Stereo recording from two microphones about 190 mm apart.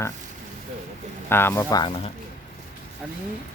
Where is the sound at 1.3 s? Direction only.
10° left (ahead or behind).